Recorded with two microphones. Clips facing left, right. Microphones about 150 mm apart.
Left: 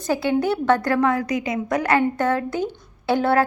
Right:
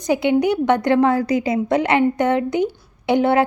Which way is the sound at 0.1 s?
20° right (ahead or behind).